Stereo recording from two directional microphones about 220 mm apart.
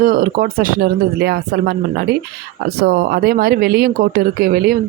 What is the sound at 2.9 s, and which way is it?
Speech, 45° right (ahead or behind).